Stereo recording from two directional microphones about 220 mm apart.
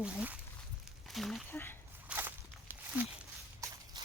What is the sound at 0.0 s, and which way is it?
Speech, 5° right (ahead or behind).